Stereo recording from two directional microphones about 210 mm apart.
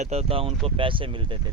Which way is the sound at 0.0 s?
30° right (ahead or behind).